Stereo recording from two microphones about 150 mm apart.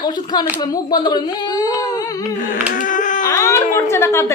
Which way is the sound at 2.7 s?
60° left (ahead or behind).